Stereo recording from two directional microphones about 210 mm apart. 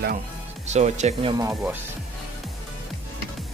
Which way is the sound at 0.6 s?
35° right (ahead or behind).